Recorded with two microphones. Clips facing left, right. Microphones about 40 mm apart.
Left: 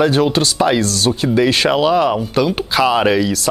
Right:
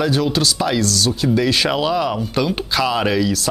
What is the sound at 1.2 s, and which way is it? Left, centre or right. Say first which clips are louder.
A woman's voice: left 3 dB; centre.